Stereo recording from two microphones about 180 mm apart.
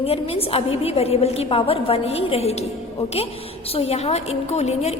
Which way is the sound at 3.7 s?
35° left (ahead or behind).